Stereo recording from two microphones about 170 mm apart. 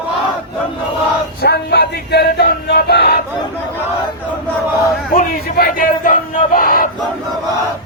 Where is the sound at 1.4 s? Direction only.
75° left (ahead or behind).